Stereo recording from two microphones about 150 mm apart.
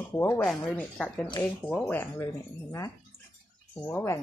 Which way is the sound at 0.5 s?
5° left (ahead or behind).